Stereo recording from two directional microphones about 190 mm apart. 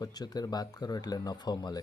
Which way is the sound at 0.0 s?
20° left (ahead or behind).